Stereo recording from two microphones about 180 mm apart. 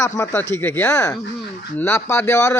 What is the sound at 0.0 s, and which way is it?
Speech, 15° left (ahead or behind).